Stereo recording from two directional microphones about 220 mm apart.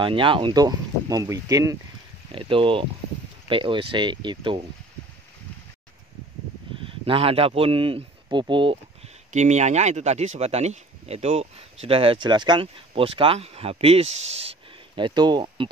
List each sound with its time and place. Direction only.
0.0 s speech: 25° right (ahead or behind)
6.9 s speech: 25° right (ahead or behind)